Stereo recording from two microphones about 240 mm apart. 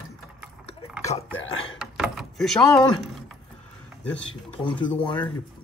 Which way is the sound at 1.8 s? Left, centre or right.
Centre.